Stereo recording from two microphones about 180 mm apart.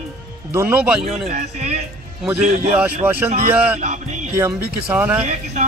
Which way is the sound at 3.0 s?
15° right (ahead or behind).